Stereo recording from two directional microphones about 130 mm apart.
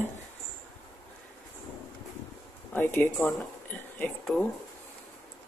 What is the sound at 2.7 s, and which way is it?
Speech, 15° left (ahead or behind).